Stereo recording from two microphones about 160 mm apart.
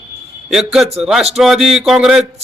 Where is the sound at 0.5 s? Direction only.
Centre (ahead or behind).